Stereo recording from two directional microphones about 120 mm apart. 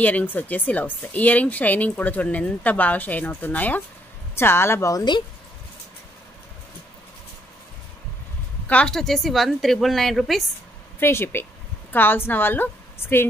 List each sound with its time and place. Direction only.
0.0 s speech: 15° left (ahead or behind)
8.6 s a woman's voice: 10° left (ahead or behind)
11.0 s speech: 20° left (ahead or behind)